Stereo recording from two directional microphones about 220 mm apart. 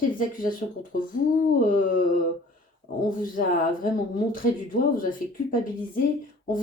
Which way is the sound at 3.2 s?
40° left (ahead or behind).